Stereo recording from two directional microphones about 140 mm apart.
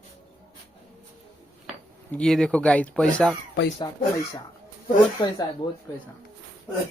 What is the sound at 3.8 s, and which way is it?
Speech, 25° left (ahead or behind).